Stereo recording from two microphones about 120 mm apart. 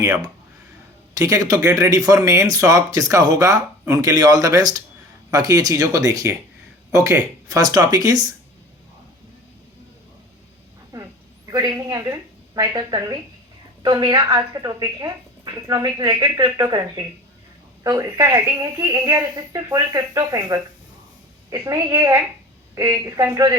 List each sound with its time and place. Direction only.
1.2 s a woman's voice: 30° right (ahead or behind)
10.9 s a sound: 30° right (ahead or behind)
11.5 s a woman's voice: 30° right (ahead or behind)